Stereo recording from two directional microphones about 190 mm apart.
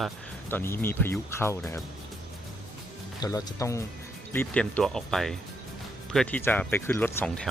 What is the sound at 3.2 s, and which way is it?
Speech, 20° left (ahead or behind).